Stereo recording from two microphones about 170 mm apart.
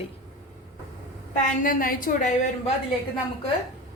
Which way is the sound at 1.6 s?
55° left (ahead or behind).